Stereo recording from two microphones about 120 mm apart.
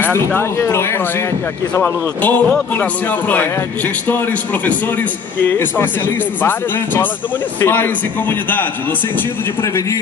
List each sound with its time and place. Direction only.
0.0 s speech: 15° left (ahead or behind)
1.8 s a man's voice: 10° left (ahead or behind)